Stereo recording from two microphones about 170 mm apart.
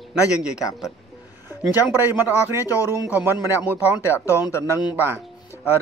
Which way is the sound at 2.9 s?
10° right (ahead or behind).